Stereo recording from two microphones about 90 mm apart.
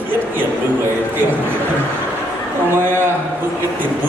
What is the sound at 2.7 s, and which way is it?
Speech, 25° right (ahead or behind).